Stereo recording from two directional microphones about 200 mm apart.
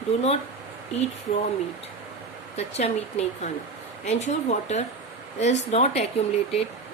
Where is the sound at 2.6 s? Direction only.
30° left (ahead or behind).